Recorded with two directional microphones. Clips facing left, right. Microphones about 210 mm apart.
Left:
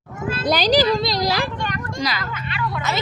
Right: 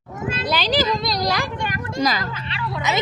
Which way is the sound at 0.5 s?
40° left (ahead or behind).